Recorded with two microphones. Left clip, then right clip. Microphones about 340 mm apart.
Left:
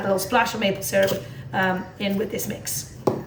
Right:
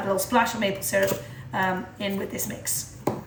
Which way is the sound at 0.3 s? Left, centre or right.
Centre.